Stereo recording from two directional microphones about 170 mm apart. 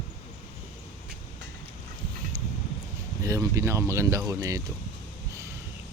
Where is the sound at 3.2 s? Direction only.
20° right (ahead or behind).